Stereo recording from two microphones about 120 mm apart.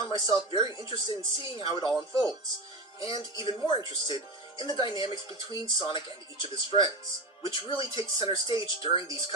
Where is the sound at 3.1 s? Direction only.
45° left (ahead or behind).